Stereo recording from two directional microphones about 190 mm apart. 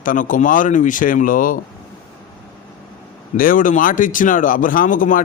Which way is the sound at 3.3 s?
45° left (ahead or behind).